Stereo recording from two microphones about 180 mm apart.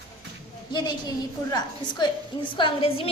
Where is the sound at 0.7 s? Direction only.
25° left (ahead or behind).